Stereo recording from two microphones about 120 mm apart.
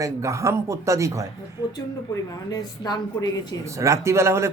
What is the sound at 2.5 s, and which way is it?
A woman's voice, 35° left (ahead or behind).